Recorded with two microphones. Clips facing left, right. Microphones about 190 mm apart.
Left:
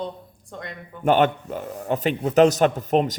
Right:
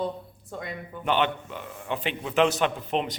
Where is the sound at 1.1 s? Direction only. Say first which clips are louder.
Left 7 dB; 45° left (ahead or behind).